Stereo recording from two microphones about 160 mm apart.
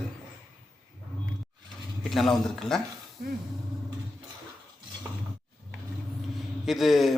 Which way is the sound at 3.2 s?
60° right (ahead or behind).